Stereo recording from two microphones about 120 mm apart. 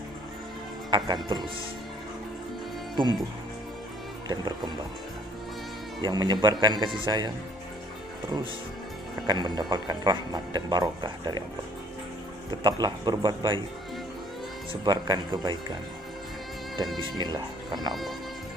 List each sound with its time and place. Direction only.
0.8 s speech: 40° right (ahead or behind)
4.3 s speech: 35° right (ahead or behind)
5.9 s speech: 35° right (ahead or behind)
9.3 s speech: 35° right (ahead or behind)
12.6 s speech: 35° right (ahead or behind)
14.7 s speech: 40° right (ahead or behind)
17.2 s speech: 35° right (ahead or behind)